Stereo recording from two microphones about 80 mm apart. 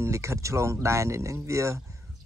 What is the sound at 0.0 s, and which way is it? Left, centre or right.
Speech, right.